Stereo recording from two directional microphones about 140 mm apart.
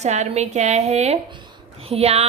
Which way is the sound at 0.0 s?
55° right (ahead or behind).